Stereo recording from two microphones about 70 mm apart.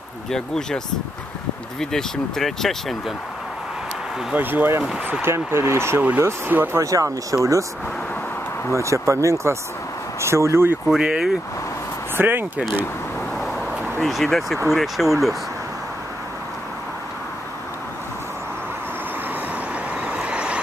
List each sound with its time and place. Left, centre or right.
0.3 s speech: centre
1.8 s speech: centre
4.4 s speech: right
5.9 s speech: right
6.8 s speech: right
8.7 s speech: right
10.9 s speech: centre
12.2 s speech: right
13.4 s vehicle: centre
14.0 s speech: centre
20.1 s vehicle: centre